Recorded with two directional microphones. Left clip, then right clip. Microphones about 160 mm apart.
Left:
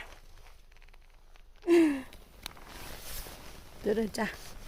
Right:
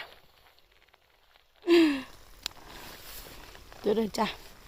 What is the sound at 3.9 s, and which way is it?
Speech, 5° right (ahead or behind).